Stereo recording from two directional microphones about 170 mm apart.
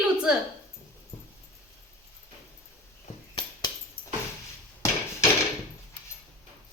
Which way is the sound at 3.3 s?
30° left (ahead or behind).